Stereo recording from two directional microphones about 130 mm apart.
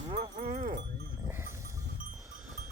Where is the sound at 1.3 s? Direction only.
20° right (ahead or behind).